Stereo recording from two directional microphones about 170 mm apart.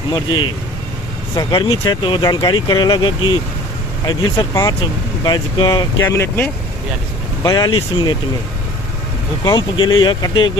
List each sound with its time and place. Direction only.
1.4 s speech: 25° left (ahead or behind)
6.0 s speech: 15° left (ahead or behind)
7.4 s speech: 25° left (ahead or behind)
9.4 s speech: 25° left (ahead or behind)